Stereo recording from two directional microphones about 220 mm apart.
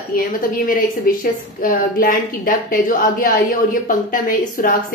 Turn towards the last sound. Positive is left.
turn(degrees=40)  # may be behind; listen again after turning